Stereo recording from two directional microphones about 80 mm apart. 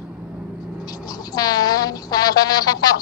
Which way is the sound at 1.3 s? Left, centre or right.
Left.